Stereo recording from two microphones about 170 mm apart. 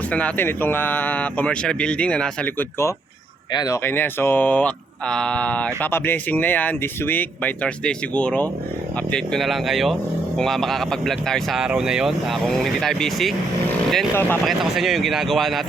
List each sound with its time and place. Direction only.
0.1 s speech: 10° left (ahead or behind)
3.8 s speech: 10° left (ahead or behind)
14.1 s speech: 15° left (ahead or behind)
14.4 s speech: centre (ahead or behind)